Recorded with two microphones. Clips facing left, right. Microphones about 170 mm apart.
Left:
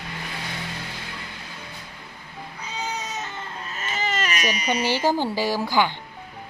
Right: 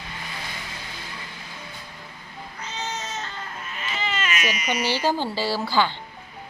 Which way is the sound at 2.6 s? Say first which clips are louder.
Left 1 dB; 10° left (ahead or behind).